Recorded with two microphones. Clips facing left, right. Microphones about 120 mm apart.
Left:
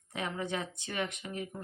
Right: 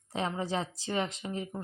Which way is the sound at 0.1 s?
30° right (ahead or behind).